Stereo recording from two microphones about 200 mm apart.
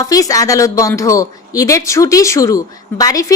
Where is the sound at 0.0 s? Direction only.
15° left (ahead or behind).